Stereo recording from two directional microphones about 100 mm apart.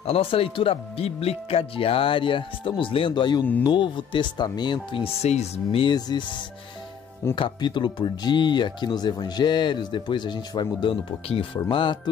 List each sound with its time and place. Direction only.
0.0 s speech: 75° left (ahead or behind); by 5.0 s 50° left (ahead or behind)
5.0 s speech: 90° left; by 5.9 s 65° left (ahead or behind)
5.9 s speech: 40° left (ahead or behind)
7.3 s speech: 50° left (ahead or behind)
11.7 s speech: 55° left (ahead or behind)